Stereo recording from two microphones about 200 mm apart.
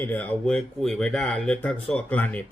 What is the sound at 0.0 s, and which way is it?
Speech, 10° left (ahead or behind).